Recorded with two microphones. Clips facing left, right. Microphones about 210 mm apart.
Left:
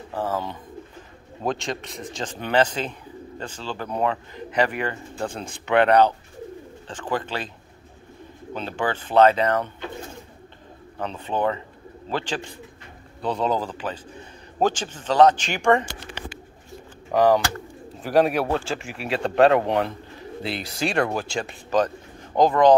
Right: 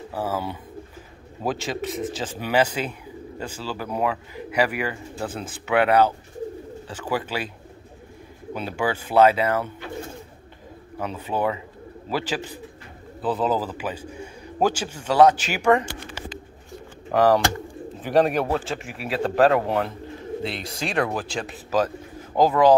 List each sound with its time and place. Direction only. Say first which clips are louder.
0.1 s speech: left 1 dB; 10° right (ahead or behind)
8.5 s speech: right 1 dB; 10° right (ahead or behind)
11.0 s speech: even; 10° right (ahead or behind)
17.1 s speech: even; centre (ahead or behind)